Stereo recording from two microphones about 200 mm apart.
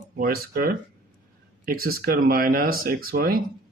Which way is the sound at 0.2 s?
45° right (ahead or behind).